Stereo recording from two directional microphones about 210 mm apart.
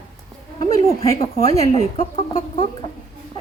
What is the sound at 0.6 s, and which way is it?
A woman's voice, 15° left (ahead or behind).